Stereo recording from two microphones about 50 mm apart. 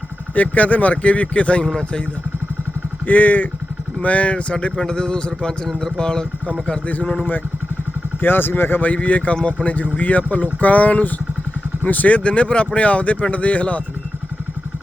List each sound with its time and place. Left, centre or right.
0.3 s speech: left
3.1 s speech: left; by 6.2 s centre
6.7 s speech: left
8.2 s speech: left
8.8 s speech: left